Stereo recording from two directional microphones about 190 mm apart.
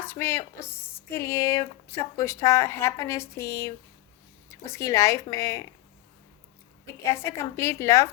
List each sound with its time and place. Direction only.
0.0 s speech: 10° left (ahead or behind)
7.0 s speech: 15° left (ahead or behind)